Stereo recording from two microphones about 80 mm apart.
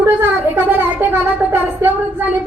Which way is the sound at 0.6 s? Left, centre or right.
Right.